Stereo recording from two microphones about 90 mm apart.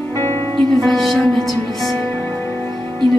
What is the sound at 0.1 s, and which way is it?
Music, 25° left (ahead or behind).